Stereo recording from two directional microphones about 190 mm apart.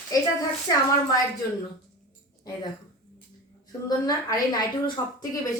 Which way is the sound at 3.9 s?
20° left (ahead or behind).